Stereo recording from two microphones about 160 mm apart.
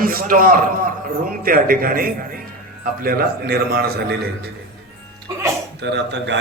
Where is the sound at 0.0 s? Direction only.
65° right (ahead or behind).